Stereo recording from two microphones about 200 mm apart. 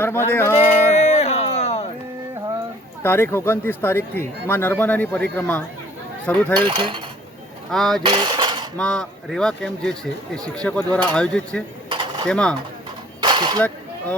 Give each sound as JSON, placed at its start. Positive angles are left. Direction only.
{"t": 0.0, "sound": "speech", "side_deg": 10}
{"t": 0.9, "sound": "music", "side_deg": 35}
{"t": 3.0, "sound": "speech", "side_deg": 10}
{"t": 6.7, "sound": "cutlery", "side_deg": -25}
{"t": 7.7, "sound": "speech", "side_deg": 0}
{"t": 8.0, "sound": "cutlery", "side_deg": -25}
{"t": 8.8, "sound": "speech", "side_deg": 5}
{"t": 13.2, "sound": "a sound", "side_deg": -25}
{"t": 13.6, "sound": "a sound", "side_deg": 5}